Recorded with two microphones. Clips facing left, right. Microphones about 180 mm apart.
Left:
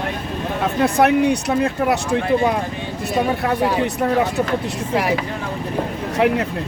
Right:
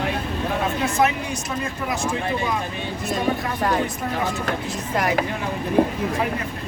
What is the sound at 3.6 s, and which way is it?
Speech, 5° left (ahead or behind).